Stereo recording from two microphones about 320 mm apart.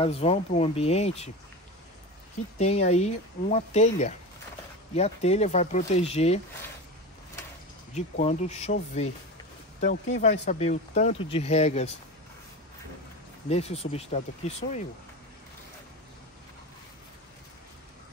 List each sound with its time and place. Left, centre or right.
0.0 s speech: centre
2.6 s speech: centre
7.9 s speech: left
13.5 s speech: centre